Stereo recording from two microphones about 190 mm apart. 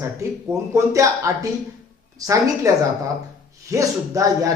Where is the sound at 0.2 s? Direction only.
15° right (ahead or behind).